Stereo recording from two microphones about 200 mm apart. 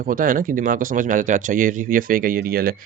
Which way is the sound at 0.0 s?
45° right (ahead or behind).